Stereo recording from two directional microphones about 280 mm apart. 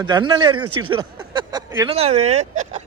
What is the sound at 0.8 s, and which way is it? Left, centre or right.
Speech, centre.